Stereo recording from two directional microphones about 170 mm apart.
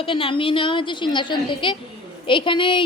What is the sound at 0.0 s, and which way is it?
A woman's voice, 30° left (ahead or behind).